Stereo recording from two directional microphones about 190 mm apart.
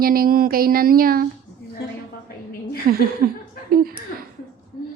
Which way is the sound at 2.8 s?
50° right (ahead or behind).